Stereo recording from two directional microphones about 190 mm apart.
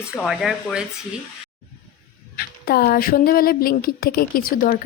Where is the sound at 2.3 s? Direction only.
55° left (ahead or behind).